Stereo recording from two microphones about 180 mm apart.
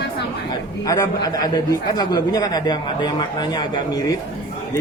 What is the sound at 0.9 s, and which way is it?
Speech, 20° left (ahead or behind).